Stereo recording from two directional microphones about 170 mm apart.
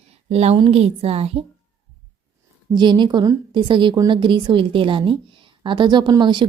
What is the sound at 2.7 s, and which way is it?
A woman's voice, 25° right (ahead or behind).